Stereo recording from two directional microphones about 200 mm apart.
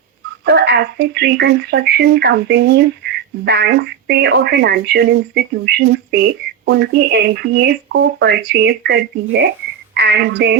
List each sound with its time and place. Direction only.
0.4 s a woman's voice: 55° right (ahead or behind)